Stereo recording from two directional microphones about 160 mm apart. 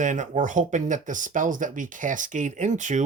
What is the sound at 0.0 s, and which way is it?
Speech, 50° right (ahead or behind).